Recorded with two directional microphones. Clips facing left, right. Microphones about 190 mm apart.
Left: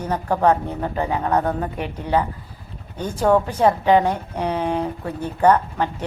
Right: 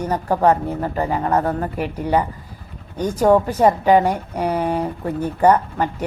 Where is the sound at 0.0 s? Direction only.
10° right (ahead or behind).